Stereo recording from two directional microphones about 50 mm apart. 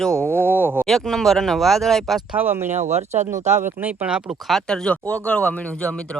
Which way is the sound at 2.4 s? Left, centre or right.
Right.